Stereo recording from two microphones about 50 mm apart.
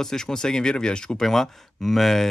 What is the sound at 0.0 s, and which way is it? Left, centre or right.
Speech, centre.